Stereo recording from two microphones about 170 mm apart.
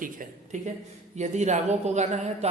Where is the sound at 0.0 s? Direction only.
50° right (ahead or behind).